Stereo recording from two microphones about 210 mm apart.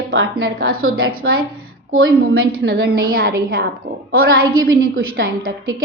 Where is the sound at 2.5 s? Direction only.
50° right (ahead or behind).